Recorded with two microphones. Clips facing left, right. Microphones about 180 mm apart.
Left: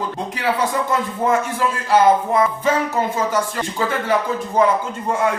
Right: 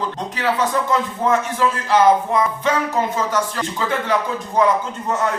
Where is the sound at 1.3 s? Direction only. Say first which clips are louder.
Right 2 dB; 10° left (ahead or behind).